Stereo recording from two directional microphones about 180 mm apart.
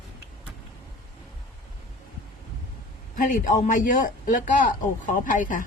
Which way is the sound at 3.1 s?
50° left (ahead or behind).